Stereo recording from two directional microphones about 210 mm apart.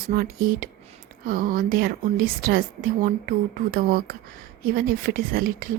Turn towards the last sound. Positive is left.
turn(degrees=-45)  # may be behind; listen again after turning